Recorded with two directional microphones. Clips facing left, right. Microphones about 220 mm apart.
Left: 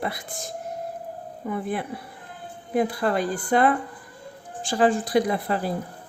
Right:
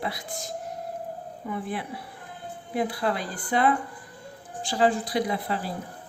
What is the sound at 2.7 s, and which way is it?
Speech, 50° left (ahead or behind).